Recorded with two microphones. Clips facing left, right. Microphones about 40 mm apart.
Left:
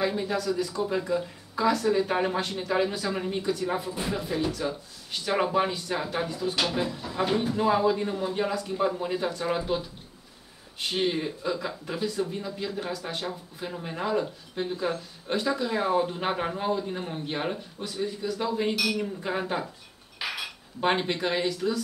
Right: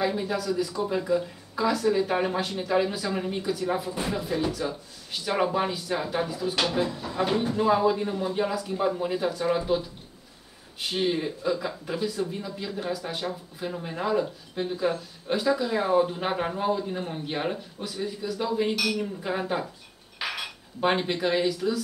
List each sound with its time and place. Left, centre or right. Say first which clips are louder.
0.0 s speech: even; centre